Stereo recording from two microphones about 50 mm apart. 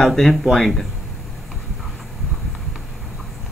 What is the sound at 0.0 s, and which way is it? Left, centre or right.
Speech, centre.